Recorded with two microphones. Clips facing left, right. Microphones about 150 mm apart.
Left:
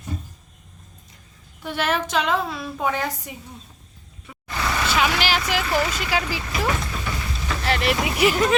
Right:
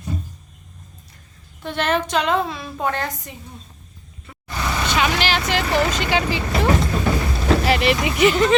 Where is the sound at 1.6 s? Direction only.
5° left (ahead or behind).